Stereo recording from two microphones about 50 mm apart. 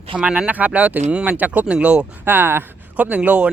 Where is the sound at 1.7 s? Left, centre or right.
Centre.